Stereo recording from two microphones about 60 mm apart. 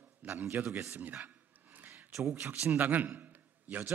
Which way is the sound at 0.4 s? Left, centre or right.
Right.